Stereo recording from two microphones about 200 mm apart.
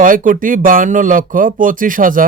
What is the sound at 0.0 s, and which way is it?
Speech, 40° right (ahead or behind).